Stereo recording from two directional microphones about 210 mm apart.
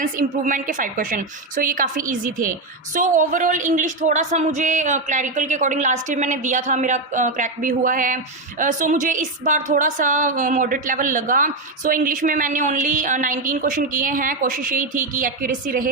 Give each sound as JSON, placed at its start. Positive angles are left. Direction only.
{"t": 0.0, "sound": "a woman's voice", "side_deg": -40}